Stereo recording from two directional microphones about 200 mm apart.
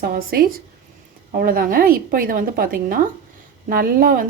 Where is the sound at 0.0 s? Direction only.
50° right (ahead or behind).